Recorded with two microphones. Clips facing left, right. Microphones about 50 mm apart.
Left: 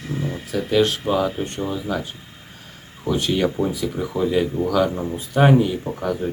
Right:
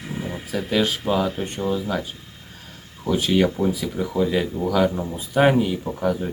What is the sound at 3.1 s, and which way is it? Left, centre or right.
Speech, centre.